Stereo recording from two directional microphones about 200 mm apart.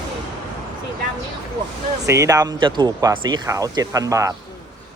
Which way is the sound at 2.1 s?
15° right (ahead or behind).